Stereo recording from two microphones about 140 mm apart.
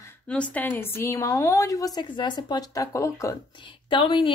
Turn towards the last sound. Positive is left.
turn(degrees=40)  # may be behind; listen again after turning